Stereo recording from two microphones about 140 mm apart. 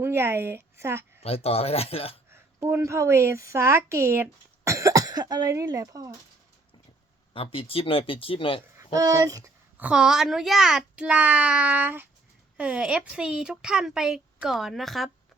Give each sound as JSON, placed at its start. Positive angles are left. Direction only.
{"t": 0.0, "sound": "speech", "side_deg": -15}
{"t": 1.2, "sound": "speech", "side_deg": 45}
{"t": 2.3, "sound": "a woman's voice", "side_deg": -15}
{"t": 7.3, "sound": "speech", "side_deg": 40}
{"t": 8.9, "sound": "speech", "side_deg": -25}
{"t": 9.7, "sound": "a child's voice", "side_deg": -10}